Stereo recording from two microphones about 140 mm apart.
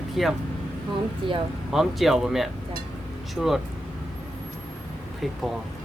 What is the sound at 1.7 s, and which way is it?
Speech, centre (ahead or behind).